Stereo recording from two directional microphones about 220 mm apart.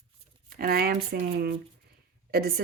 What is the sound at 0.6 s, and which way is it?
A woman's voice, 45° right (ahead or behind).